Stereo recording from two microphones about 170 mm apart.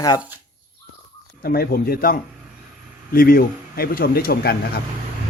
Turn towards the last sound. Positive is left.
turn(degrees=65)  # may be behind; listen again after turning